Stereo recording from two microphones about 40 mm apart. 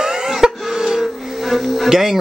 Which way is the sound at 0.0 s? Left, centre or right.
Centre.